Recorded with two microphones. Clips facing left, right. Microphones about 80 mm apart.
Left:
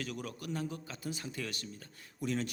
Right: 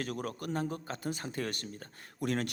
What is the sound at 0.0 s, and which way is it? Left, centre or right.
Speech, right.